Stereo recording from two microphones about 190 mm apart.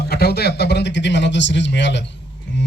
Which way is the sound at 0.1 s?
55° left (ahead or behind).